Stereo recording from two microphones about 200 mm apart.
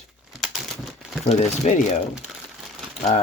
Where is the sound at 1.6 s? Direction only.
35° left (ahead or behind).